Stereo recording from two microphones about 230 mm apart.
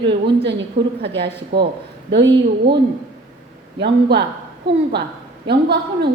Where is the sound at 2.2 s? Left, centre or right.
Right.